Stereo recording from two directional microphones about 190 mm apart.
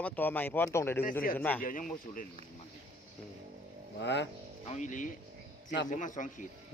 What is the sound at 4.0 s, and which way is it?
Speech, 70° left (ahead or behind).